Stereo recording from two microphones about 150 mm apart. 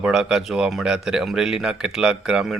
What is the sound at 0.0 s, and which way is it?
A man's voice, 5° right (ahead or behind).